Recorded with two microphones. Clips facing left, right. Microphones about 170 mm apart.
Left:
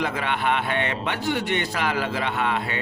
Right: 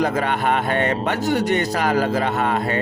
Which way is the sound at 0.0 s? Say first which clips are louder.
Right 5 dB; 40° right (ahead or behind).